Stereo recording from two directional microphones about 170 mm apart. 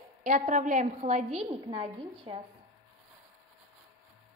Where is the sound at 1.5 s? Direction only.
30° right (ahead or behind).